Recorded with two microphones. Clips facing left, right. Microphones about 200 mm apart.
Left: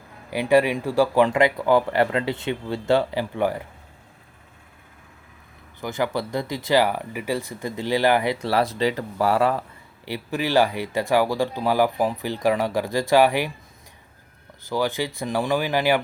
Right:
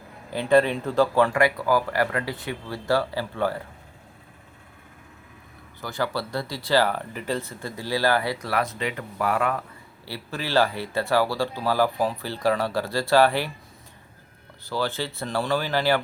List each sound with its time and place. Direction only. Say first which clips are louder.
0.3 s speech: left 1 dB; 10° left (ahead or behind)
5.8 s speech: left 3 dB; 15° left (ahead or behind)
10.1 s speech: left 4 dB; 15° left (ahead or behind)
14.7 s speech: left 3 dB; 15° left (ahead or behind)